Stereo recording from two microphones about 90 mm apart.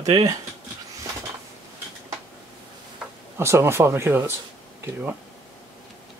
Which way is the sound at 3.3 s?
30° right (ahead or behind).